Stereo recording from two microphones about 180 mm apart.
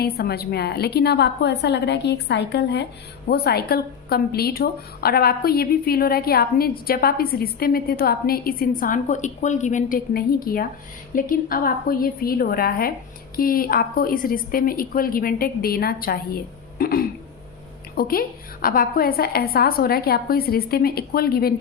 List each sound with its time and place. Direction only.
0.0 s a woman's voice: 60° left (ahead or behind)